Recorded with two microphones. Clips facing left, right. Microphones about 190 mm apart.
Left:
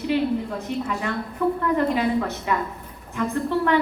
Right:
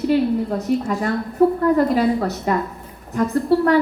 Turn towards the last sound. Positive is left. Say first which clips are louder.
# right 5 dB
turn(degrees=-40)  # may be behind; listen again after turning